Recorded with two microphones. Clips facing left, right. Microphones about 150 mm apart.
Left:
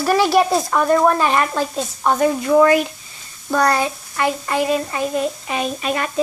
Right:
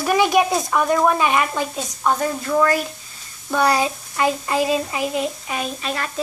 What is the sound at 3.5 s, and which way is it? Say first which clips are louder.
Speech: left 1 dB; 10° right (ahead or behind).